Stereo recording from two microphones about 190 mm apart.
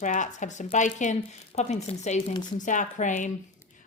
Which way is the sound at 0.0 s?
40° left (ahead or behind).